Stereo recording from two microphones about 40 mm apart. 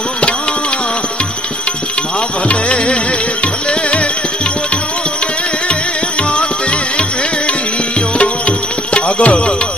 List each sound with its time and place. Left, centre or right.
2.4 s music: left
8.2 s music: left